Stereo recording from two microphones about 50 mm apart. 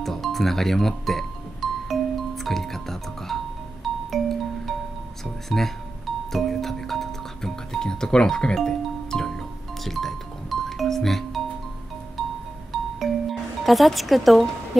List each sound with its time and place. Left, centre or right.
0.0 s music: centre
12.7 s music: centre